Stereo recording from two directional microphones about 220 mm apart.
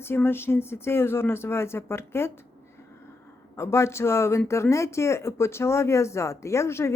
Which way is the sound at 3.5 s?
10° left (ahead or behind).